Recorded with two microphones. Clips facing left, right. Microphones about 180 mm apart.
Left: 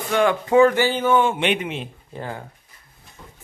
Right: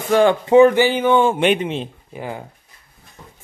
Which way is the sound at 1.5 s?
30° right (ahead or behind).